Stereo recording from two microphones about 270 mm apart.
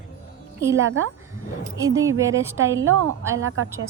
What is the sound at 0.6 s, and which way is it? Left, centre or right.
Speech, centre.